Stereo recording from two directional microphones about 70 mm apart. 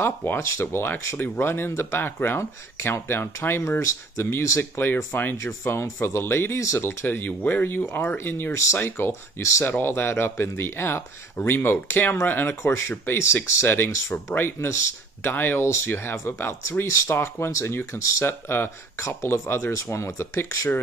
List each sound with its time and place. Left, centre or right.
0.0 s speech: left
12.9 s speech: left
13.5 s speech: left
15.3 s speech: left
15.6 s speech: left
16.8 s speech: left
17.1 s speech: left
19.8 s speech: left